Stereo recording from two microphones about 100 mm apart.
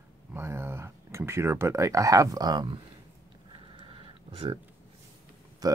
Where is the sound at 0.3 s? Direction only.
25° right (ahead or behind); by 2.7 s 40° right (ahead or behind).